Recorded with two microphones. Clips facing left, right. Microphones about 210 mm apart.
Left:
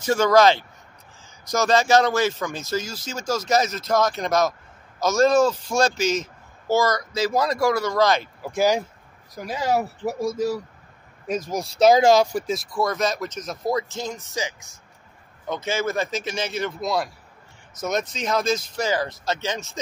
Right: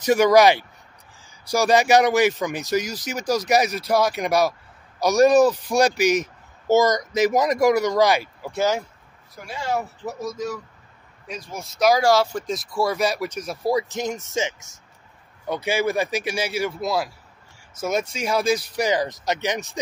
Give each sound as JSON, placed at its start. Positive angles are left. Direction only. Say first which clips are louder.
{"t": 0.0, "sound": "speech", "louder": "right 2 dB", "side_deg": -15}
{"t": 8.5, "sound": "speech", "louder": "left 2 dB", "side_deg": 15}
{"t": 9.3, "sound": "speech", "louder": "left 3 dB", "side_deg": 40}
{"t": 11.2, "sound": "speech", "louder": "left 8 dB", "side_deg": 45}
{"t": 12.7, "sound": "speech", "louder": "right 2 dB", "side_deg": -10}
{"t": 15.4, "sound": "speech", "louder": "right 3 dB", "side_deg": -10}
{"t": 18.1, "sound": "speech", "louder": "right 2 dB", "side_deg": -10}